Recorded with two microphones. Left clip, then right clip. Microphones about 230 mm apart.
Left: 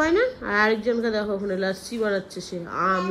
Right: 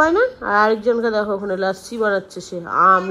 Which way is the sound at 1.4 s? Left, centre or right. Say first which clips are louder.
Right 5 dB; right.